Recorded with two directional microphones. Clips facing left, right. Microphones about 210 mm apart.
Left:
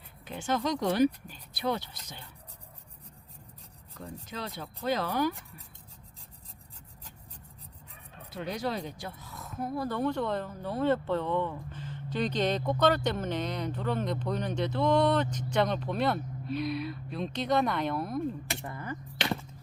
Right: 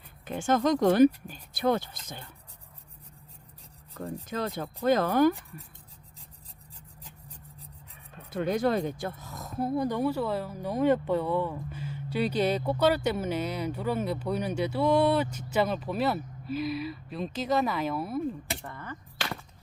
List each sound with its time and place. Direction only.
0.3 s speech: 50° right (ahead or behind)
3.9 s speech: 50° right (ahead or behind)
8.3 s speech: 50° right (ahead or behind); by 9.8 s 30° right (ahead or behind)
9.8 s speech: 10° right (ahead or behind)
18.6 s a sound: 10° left (ahead or behind)